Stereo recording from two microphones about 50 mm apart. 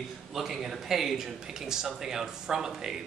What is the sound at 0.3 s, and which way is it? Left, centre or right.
A man's voice, centre.